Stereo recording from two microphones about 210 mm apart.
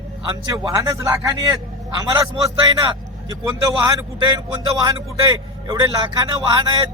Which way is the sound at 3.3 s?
15° right (ahead or behind).